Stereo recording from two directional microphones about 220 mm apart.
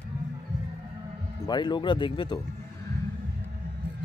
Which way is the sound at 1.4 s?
20° left (ahead or behind).